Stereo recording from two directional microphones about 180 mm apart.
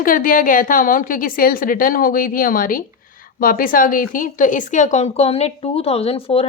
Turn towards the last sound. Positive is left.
turn(degrees=30)  # may be behind; listen again after turning